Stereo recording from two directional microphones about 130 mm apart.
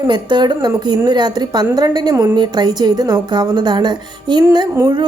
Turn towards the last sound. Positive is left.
turn(degrees=-35)  # may be behind; listen again after turning